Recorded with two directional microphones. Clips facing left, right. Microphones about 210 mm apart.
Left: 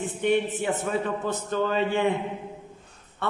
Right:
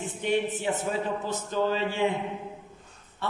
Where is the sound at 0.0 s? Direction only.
55° left (ahead or behind).